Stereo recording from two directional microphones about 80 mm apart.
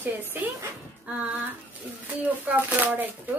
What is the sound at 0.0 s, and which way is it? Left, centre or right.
Speech, right.